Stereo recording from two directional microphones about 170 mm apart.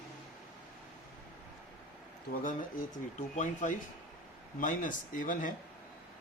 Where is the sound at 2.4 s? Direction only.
50° left (ahead or behind).